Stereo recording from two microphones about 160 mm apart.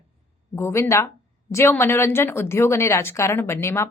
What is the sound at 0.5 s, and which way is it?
A woman's voice, 15° left (ahead or behind).